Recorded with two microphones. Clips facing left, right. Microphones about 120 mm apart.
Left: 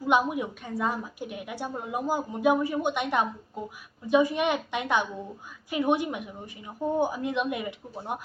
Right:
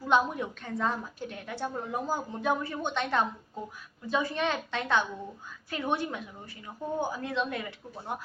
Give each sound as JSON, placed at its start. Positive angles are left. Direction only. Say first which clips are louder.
{"t": 0.1, "sound": "a woman's voice", "louder": "left 2 dB", "side_deg": 10}